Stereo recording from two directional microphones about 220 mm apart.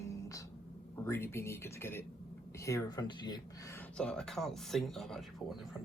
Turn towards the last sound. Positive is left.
turn(degrees=0)  # may be behind; listen again after turning